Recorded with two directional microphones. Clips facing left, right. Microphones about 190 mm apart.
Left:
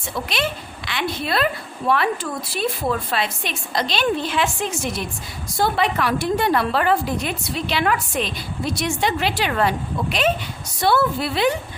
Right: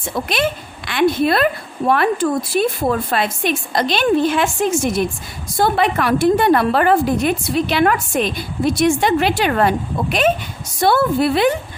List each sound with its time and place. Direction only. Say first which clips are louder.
0.3 s a woman's voice: right 6 dB; 50° right (ahead or behind)